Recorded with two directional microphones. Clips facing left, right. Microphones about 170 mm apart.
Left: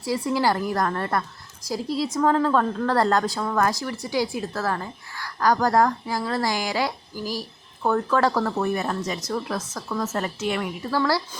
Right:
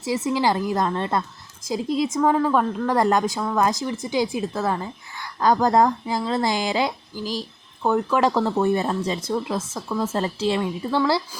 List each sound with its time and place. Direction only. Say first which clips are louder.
0.0 s a woman's voice: right 1 dB; 20° right (ahead or behind)